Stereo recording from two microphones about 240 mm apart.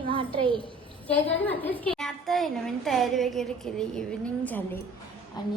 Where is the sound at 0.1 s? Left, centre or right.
Right.